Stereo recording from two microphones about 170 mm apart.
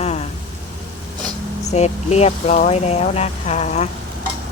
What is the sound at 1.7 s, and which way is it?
Speech, 40° left (ahead or behind).